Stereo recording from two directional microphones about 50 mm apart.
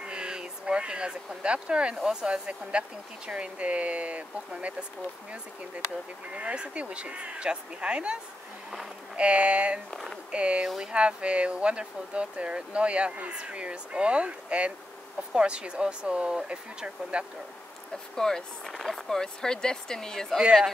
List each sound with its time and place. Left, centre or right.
0.0 s speech: centre
6.3 s speech: right
18.1 s speech: centre